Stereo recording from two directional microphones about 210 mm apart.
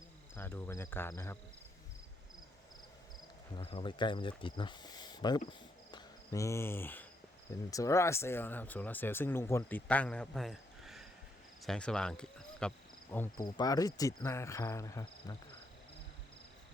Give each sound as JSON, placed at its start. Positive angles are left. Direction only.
{"t": 0.3, "sound": "speech", "side_deg": 10}
{"t": 3.5, "sound": "speech", "side_deg": 30}
{"t": 5.5, "sound": "cricket", "side_deg": 20}
{"t": 7.7, "sound": "speech", "side_deg": 15}